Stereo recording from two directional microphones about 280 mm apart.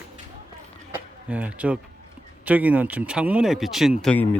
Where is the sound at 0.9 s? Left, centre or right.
Centre.